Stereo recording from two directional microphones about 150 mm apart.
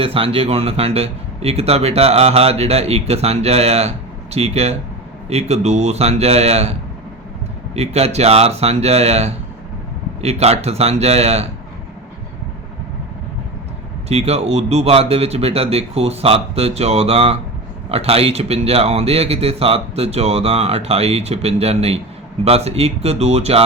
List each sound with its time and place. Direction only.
0.0 s speech: 40° right (ahead or behind)
14.1 s speech: 45° right (ahead or behind)